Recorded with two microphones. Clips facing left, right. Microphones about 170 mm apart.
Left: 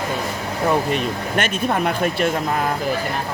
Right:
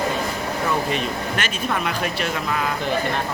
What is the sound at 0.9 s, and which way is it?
Speech, 50° left (ahead or behind).